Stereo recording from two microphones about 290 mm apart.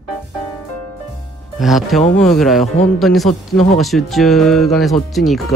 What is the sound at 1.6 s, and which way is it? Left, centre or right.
Speech, centre.